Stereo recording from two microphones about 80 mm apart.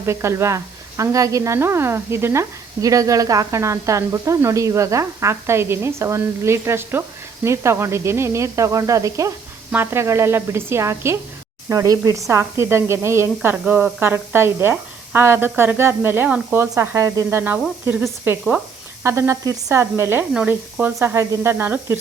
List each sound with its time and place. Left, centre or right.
0.0 s a woman's voice: right
9.7 s a woman's voice: right
11.7 s a woman's voice: right
13.7 s speech: centre
14.0 s a woman's voice: right
16.9 s speech: right
17.3 s a woman's voice: right
19.0 s a woman's voice: right